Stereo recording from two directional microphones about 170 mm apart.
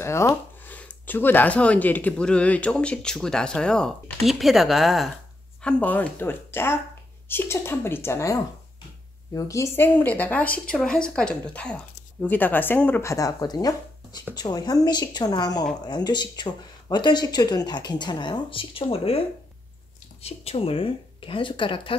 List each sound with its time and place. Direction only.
0.0 s a woman's voice: 15° left (ahead or behind)